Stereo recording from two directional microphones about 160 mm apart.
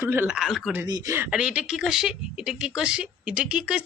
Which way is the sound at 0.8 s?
20° right (ahead or behind).